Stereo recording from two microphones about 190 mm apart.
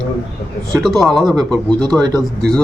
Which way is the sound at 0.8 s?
Centre (ahead or behind).